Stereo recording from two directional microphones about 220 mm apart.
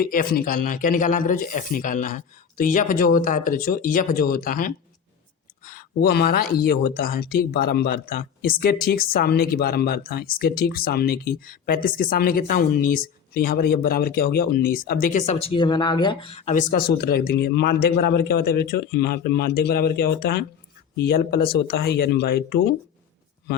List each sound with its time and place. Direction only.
0.0 s speech: 40° left (ahead or behind)